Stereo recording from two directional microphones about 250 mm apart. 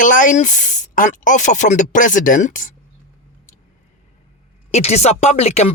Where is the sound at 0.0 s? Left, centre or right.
Left.